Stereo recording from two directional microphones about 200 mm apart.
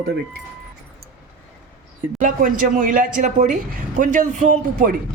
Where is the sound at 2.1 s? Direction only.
40° right (ahead or behind).